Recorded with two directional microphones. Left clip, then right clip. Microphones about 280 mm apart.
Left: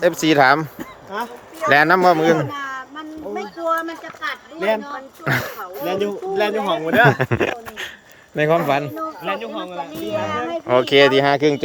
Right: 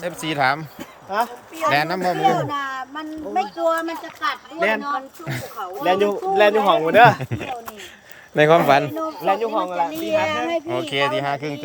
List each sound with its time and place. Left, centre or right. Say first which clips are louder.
0.0 s speech: left 7 dB; centre
1.1 s speech: right 5 dB; centre
1.7 s speech: left 9 dB; centre
2.4 s speech: right 1 dB; centre
5.2 s speech: left 10 dB; centre
5.8 s speech: right 4 dB; centre
7.2 s speech: left 9 dB; centre
8.4 s speech: right 3 dB; centre
9.0 s speech: right 4 dB; right
10.0 s speech: left 1 dB; right
10.8 s speech: left 11 dB; centre